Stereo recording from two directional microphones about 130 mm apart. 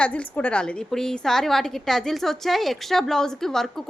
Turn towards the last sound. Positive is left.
turn(degrees=5)  # may be behind; listen again after turning